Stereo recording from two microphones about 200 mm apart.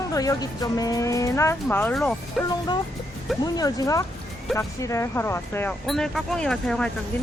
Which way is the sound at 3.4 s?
20° left (ahead or behind).